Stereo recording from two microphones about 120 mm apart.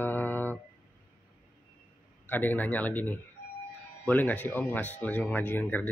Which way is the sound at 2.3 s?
15° left (ahead or behind).